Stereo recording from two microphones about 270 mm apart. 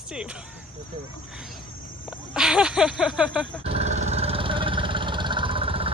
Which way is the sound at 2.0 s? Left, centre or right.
Centre.